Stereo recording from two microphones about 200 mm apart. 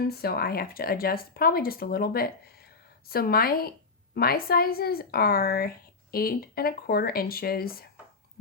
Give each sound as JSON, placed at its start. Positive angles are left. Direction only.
{"t": 0.1, "sound": "speech", "side_deg": 50}